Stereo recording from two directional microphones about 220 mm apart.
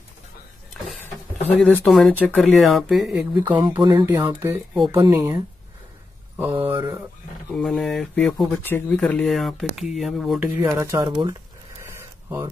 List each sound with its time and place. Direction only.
1.6 s speech: 5° left (ahead or behind)
3.4 s speech: 20° right (ahead or behind)
4.8 s speech: 20° right (ahead or behind)
6.6 s speech: 10° right (ahead or behind)
7.5 s speech: centre (ahead or behind)
10.8 s speech: 15° right (ahead or behind)
11.8 s a sound: 10° right (ahead or behind)